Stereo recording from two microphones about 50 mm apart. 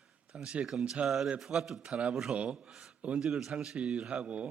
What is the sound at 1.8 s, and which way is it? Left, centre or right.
Speech, right.